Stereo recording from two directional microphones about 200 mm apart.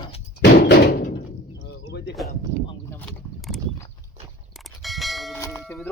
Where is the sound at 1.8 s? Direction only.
55° left (ahead or behind).